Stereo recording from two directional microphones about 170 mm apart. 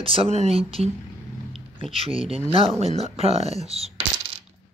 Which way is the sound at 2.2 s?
35° right (ahead or behind).